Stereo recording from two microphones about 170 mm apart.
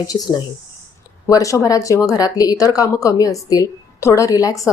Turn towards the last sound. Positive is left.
turn(degrees=20)  # may be behind; listen again after turning